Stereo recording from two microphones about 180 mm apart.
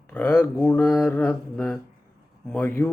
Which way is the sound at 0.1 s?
10° left (ahead or behind).